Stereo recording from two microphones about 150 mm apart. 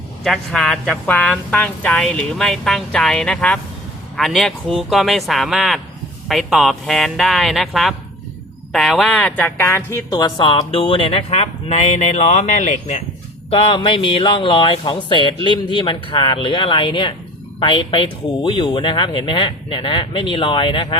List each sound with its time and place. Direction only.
0.3 s speech: centre (ahead or behind)
10.1 s speech: 30° left (ahead or behind); by 13.0 s 55° left (ahead or behind)
13.5 s speech: 35° left (ahead or behind)